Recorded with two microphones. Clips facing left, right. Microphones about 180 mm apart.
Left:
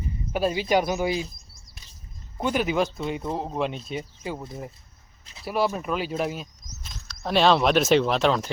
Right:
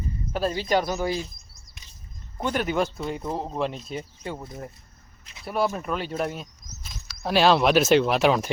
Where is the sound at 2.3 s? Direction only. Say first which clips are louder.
Left 1 dB; 5° left (ahead or behind).